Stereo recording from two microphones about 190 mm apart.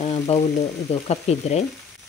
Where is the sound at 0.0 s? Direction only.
35° left (ahead or behind).